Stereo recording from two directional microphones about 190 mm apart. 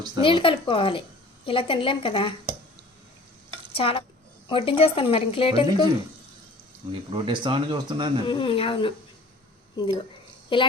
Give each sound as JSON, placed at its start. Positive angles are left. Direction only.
{"t": 0.2, "sound": "a woman's voice", "side_deg": 25}
{"t": 3.8, "sound": "a woman's voice", "side_deg": 30}
{"t": 7.1, "sound": "speech", "side_deg": -25}
{"t": 8.3, "sound": "a woman's voice", "side_deg": 25}